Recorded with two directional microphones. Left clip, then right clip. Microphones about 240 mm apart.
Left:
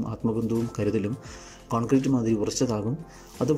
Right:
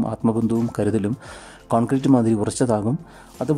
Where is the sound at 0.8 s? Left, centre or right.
Right.